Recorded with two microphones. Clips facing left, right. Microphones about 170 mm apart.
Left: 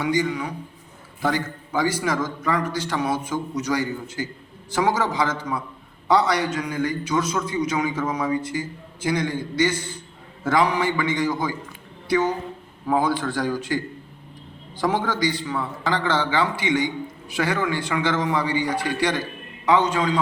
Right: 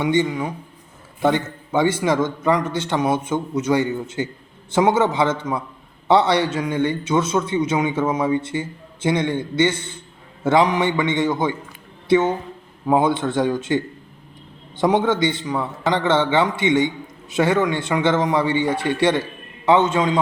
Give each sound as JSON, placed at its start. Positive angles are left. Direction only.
{"t": 0.0, "sound": "a man's voice", "side_deg": -25}